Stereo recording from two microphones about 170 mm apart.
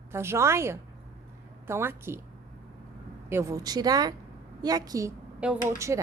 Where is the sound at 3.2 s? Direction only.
15° right (ahead or behind).